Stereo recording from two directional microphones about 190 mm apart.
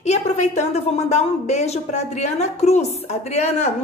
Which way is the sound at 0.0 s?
35° left (ahead or behind).